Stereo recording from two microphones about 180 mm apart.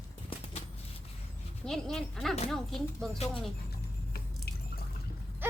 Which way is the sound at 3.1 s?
35° left (ahead or behind).